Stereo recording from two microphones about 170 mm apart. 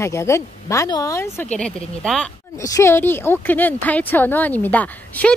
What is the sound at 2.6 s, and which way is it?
Speech, 15° left (ahead or behind).